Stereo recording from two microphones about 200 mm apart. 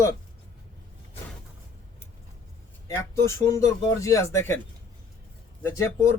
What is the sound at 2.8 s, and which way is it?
Speech, 15° left (ahead or behind).